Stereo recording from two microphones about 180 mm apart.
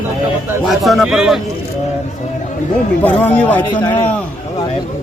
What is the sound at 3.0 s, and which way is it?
Speech, 10° left (ahead or behind).